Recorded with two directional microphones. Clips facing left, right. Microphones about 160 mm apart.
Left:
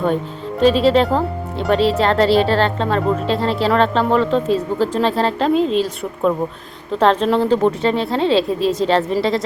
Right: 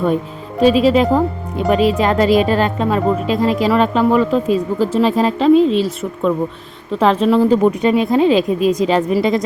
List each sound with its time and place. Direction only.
0.6 s speech: 5° right (ahead or behind)
8.4 s a woman's voice: 30° left (ahead or behind)
8.9 s speech: 10° right (ahead or behind)